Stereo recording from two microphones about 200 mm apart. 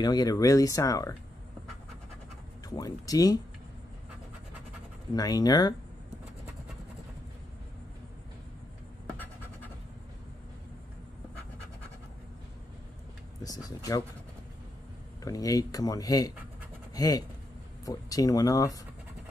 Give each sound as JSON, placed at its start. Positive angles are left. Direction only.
{"t": 0.0, "sound": "speech", "side_deg": 20}
{"t": 2.7, "sound": "speech", "side_deg": 20}
{"t": 5.1, "sound": "speech", "side_deg": 20}
{"t": 13.4, "sound": "speech", "side_deg": 20}
{"t": 15.2, "sound": "speech", "side_deg": 15}